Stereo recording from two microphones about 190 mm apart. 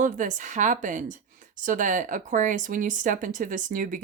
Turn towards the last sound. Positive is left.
turn(degrees=-45)  # may be behind; listen again after turning